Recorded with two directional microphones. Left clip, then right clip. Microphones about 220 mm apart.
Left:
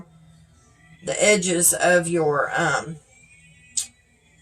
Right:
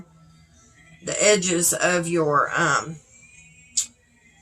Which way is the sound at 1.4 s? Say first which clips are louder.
Left 2 dB; 20° right (ahead or behind).